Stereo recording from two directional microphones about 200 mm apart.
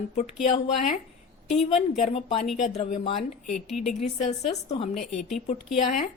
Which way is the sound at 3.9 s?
35° left (ahead or behind).